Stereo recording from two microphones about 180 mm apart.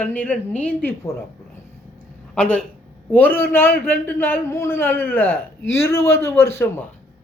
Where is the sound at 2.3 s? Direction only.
5° left (ahead or behind).